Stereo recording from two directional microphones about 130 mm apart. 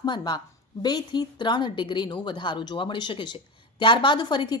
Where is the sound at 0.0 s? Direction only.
35° left (ahead or behind).